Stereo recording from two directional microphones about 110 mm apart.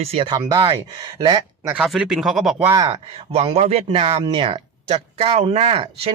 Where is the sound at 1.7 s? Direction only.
5° right (ahead or behind).